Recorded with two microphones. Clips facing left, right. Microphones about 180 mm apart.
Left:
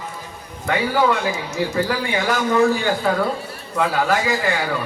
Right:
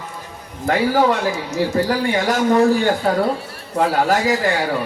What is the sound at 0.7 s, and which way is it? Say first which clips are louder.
A man's voice: right 3 dB; 40° right (ahead or behind).